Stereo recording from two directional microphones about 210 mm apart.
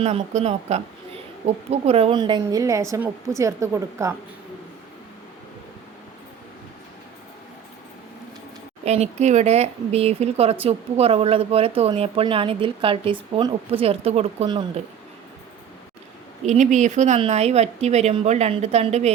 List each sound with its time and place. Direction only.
0.0 s speech: 30° right (ahead or behind); by 4.1 s 15° right (ahead or behind)
8.8 s speech: 30° right (ahead or behind)
16.5 s speech: 35° right (ahead or behind)